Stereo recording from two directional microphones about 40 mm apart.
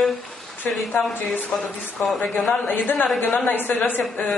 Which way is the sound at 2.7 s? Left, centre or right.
Left.